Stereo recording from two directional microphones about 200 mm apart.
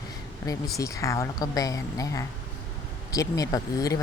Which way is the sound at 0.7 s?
15° left (ahead or behind).